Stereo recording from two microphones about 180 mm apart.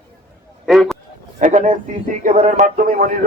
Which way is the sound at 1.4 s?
45° right (ahead or behind).